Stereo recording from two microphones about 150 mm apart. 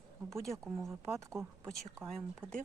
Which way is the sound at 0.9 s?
20° right (ahead or behind).